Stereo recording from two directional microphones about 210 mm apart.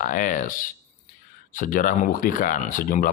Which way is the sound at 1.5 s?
40° left (ahead or behind).